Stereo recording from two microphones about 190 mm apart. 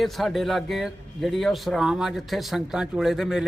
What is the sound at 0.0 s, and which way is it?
A man's voice, centre (ahead or behind).